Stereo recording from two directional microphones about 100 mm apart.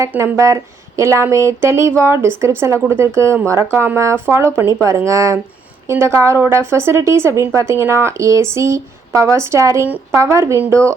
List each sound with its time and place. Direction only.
0.2 s speech: 30° right (ahead or behind)